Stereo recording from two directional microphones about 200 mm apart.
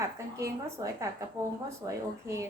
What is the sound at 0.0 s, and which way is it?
A woman's voice, 15° right (ahead or behind).